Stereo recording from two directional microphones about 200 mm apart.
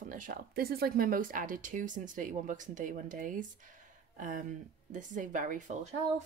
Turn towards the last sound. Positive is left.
turn(degrees=-40)  # may be behind; listen again after turning